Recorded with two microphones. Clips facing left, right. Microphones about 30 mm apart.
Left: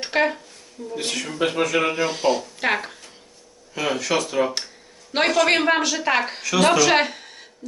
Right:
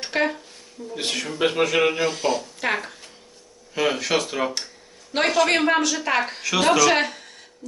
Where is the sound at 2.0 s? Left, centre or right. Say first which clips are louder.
Left 2 dB; centre.